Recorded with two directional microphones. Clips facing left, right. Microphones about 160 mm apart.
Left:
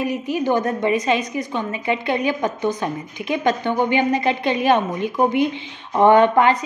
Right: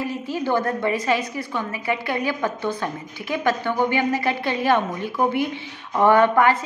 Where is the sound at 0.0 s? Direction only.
15° left (ahead or behind).